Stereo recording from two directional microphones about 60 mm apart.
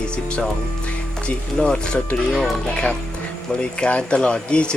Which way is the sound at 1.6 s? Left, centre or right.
Centre.